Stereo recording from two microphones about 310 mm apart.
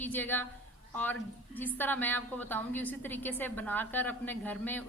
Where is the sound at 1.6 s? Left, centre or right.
Centre.